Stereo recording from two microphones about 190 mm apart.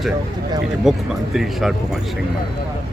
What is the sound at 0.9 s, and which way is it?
Speech, centre (ahead or behind).